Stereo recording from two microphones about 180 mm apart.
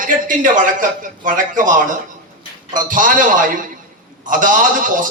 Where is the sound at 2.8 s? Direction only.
45° right (ahead or behind).